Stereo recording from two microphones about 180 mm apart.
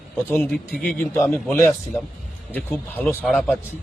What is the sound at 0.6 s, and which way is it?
Speech, centre (ahead or behind).